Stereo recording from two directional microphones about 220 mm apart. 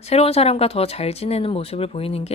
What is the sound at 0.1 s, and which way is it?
Speech, 30° left (ahead or behind).